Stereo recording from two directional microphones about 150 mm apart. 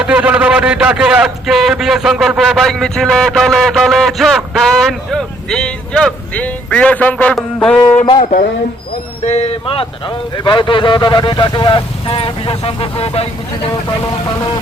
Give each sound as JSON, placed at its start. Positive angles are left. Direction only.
{"t": 0.0, "sound": "a man's voice", "side_deg": -5}
{"t": 8.2, "sound": "speech", "side_deg": 55}
{"t": 9.2, "sound": "speech", "side_deg": 45}